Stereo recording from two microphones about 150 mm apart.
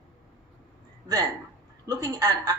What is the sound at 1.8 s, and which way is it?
Speech, 25° right (ahead or behind).